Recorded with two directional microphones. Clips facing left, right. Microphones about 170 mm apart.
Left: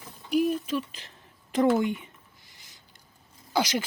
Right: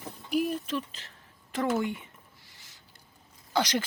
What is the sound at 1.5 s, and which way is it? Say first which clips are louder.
Speech: left 6 dB; 20° left (ahead or behind).